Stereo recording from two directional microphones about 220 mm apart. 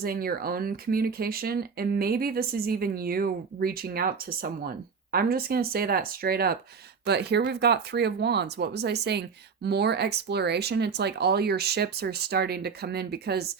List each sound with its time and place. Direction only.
0.0 s speech: 45° right (ahead or behind)